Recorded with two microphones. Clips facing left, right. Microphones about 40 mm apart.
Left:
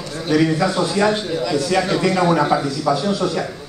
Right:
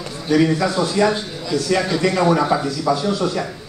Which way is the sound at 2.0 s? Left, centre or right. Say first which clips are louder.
Even; centre.